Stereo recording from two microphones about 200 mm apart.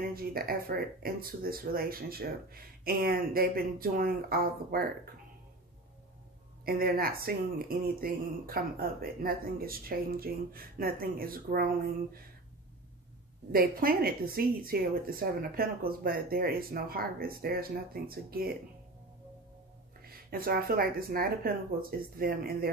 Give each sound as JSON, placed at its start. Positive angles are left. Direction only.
{"t": 0.1, "sound": "speech", "side_deg": -45}
{"t": 6.6, "sound": "speech", "side_deg": -50}
{"t": 13.5, "sound": "speech", "side_deg": -45}
{"t": 20.0, "sound": "speech", "side_deg": -50}